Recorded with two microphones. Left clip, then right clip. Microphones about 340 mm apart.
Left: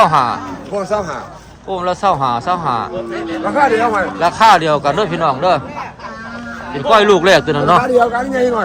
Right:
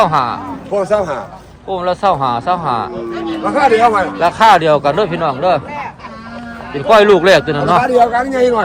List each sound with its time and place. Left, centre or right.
0.0 s speech: centre
0.7 s speech: right
1.7 s speech: centre
3.4 s speech: right
4.2 s speech: centre
6.7 s speech: centre
7.9 s a man's voice: right